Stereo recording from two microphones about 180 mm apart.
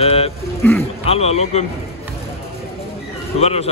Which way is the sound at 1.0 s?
35° left (ahead or behind).